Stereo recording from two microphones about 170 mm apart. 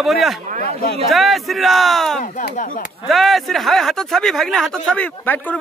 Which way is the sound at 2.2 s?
50° left (ahead or behind).